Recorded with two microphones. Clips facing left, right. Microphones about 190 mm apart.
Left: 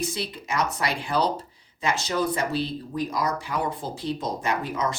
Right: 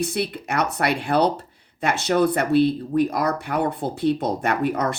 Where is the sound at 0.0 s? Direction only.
60° right (ahead or behind).